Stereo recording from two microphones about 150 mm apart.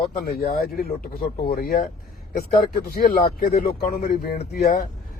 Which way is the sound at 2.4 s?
90° left.